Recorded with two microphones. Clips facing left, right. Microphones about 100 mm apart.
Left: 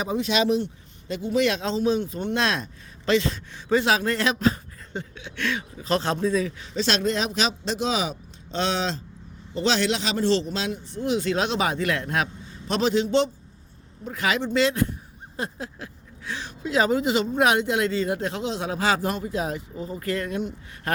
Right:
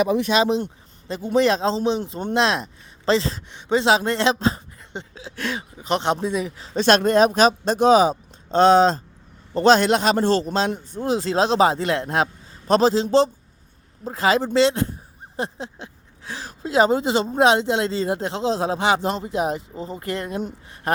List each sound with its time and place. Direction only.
0.0 s speech: 75° right (ahead or behind)
0.3 s speech: 35° right (ahead or behind)
6.7 s speech: 50° right (ahead or behind); by 20.4 s 30° right (ahead or behind)
20.9 s gasp: 25° right (ahead or behind)